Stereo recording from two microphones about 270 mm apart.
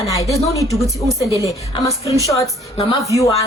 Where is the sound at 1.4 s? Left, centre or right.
Centre.